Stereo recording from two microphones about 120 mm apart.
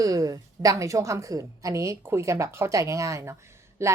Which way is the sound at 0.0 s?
30° right (ahead or behind).